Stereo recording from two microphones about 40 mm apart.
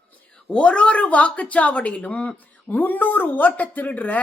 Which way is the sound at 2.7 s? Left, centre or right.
Left.